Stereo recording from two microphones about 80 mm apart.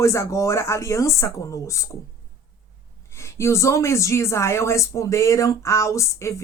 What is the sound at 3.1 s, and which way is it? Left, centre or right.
Speech, left.